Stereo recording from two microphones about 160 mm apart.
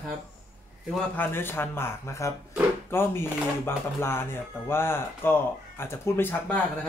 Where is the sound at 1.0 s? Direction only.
10° left (ahead or behind).